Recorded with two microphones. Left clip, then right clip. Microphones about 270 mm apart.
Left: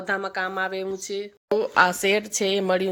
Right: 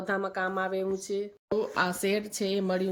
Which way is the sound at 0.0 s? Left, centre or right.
Centre.